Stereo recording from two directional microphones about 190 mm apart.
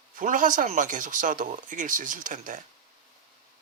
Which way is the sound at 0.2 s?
45° right (ahead or behind).